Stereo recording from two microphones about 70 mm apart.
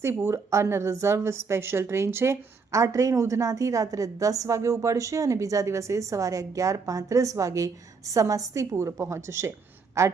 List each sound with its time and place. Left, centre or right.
0.0 s a woman's voice: right